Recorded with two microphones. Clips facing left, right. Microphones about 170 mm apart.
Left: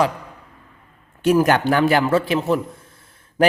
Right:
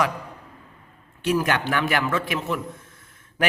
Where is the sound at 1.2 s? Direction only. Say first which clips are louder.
Left 7 dB; 45° left (ahead or behind).